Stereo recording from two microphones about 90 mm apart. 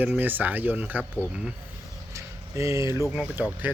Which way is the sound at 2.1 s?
35° right (ahead or behind).